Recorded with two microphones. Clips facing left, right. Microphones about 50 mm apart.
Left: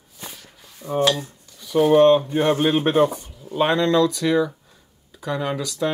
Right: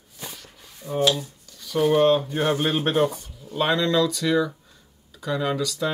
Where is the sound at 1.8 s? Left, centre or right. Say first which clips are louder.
Left 4 dB; centre.